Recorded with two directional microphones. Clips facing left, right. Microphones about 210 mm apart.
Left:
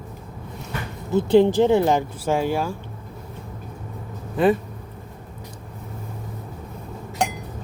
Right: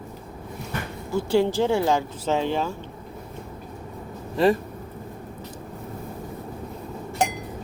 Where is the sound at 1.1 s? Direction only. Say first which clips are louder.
Left 5 dB; 20° left (ahead or behind).